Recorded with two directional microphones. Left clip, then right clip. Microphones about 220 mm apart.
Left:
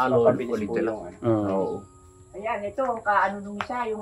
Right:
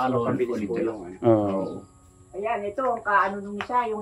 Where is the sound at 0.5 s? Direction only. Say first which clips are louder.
Left 1 dB; 5° left (ahead or behind).